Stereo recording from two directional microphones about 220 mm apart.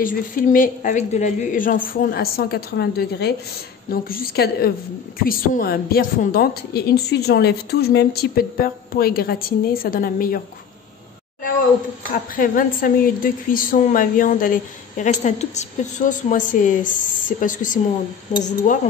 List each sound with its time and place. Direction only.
0.0 s a woman's voice: 40° left (ahead or behind)
12.4 s a woman's voice: 40° left (ahead or behind)